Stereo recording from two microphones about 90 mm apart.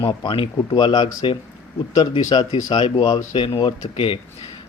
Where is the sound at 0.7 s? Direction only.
60° left (ahead or behind).